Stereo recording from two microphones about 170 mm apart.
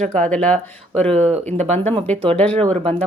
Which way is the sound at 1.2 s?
40° right (ahead or behind).